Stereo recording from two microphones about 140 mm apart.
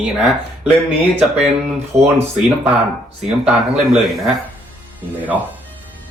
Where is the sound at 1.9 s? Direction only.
20° right (ahead or behind).